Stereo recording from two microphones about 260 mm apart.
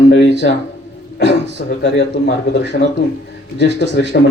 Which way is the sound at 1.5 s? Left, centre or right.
Left.